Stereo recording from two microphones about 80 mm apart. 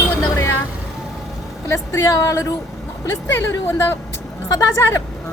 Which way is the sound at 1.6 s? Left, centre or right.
Left.